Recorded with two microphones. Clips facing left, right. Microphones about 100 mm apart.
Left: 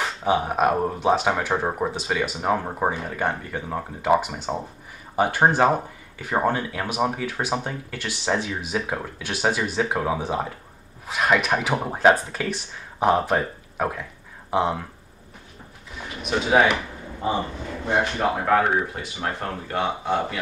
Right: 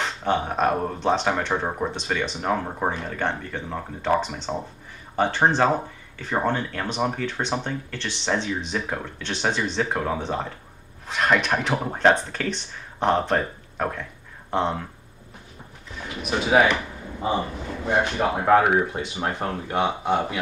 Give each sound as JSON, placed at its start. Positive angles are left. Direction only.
{"t": 0.0, "sound": "speech", "side_deg": 5}
{"t": 16.0, "sound": "speech", "side_deg": 0}
{"t": 18.6, "sound": "speech", "side_deg": -15}